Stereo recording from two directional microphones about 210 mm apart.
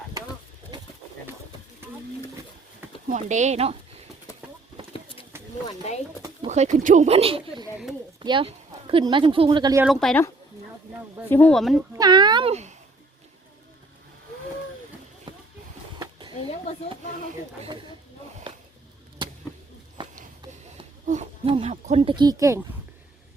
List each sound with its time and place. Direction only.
3.1 s speech: 35° right (ahead or behind)
5.6 s speech: 30° left (ahead or behind)
6.5 s speech: 35° right (ahead or behind)
9.8 s speech: centre (ahead or behind)
11.3 s speech: 5° left (ahead or behind)
11.9 s speech: 20° right (ahead or behind)
17.6 s speech: 20° right (ahead or behind)
18.5 s a sound: 25° right (ahead or behind)
19.2 s chop: 25° right (ahead or behind)
21.1 s speech: 30° right (ahead or behind); by 22.6 s 15° right (ahead or behind)